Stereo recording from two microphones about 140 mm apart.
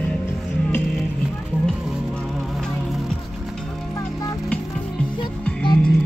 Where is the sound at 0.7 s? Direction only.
15° left (ahead or behind).